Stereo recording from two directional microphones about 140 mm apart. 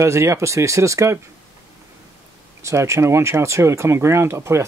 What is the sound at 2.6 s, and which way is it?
Speech, 20° right (ahead or behind).